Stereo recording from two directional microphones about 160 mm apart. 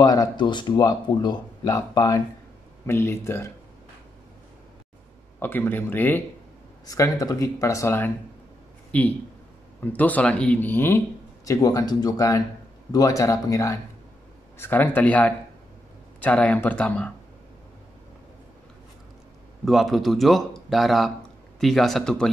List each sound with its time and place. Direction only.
0.0 s speech: 25° left (ahead or behind)
5.4 s speech: 10° left (ahead or behind)
19.6 s speech: centre (ahead or behind)